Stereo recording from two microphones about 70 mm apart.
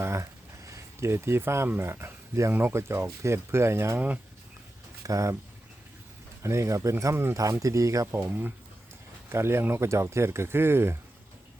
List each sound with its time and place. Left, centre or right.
0.0 s a sound: right
2.5 s speech: right
3.9 s speech: right
5.0 s speech: right
6.4 s speech: right
7.3 s speech: right
8.2 s speech: right
9.3 s speech: right